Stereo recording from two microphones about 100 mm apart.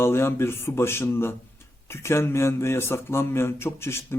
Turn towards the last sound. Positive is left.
turn(degrees=25)  # may be behind; listen again after turning